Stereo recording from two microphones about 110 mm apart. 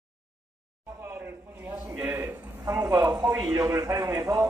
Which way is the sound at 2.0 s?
20° right (ahead or behind).